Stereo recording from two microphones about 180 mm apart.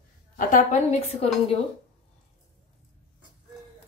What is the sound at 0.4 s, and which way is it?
Speech, 45° left (ahead or behind).